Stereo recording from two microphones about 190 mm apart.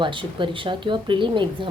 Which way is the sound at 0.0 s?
25° right (ahead or behind).